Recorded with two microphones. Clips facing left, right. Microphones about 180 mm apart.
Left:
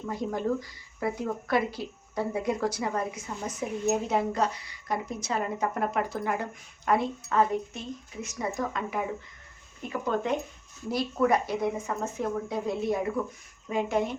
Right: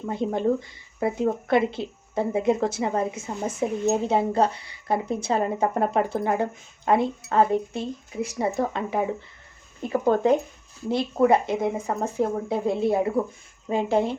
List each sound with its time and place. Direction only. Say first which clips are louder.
0.0 s speech: right 6 dB; 30° right (ahead or behind)
11.9 s speech: right 6 dB; 35° right (ahead or behind)